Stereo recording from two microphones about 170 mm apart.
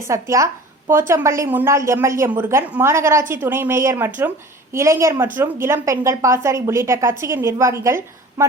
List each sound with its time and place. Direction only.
0.0 s a woman's voice: 20° right (ahead or behind)